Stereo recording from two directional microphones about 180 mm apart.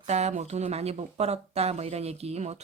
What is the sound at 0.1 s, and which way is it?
Speech, 40° right (ahead or behind).